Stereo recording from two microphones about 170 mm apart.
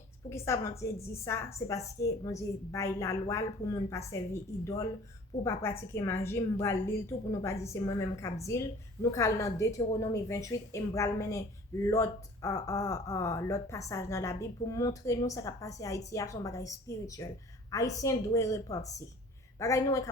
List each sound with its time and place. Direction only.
0.3 s a woman's voice: 15° left (ahead or behind)